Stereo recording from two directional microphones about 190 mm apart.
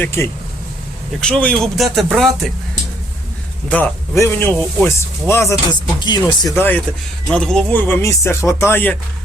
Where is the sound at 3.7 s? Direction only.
10° left (ahead or behind).